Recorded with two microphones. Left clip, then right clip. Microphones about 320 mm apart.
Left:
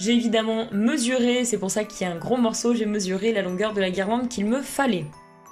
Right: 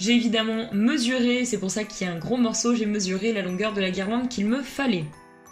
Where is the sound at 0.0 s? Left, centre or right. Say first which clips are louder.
Left 1 dB; left.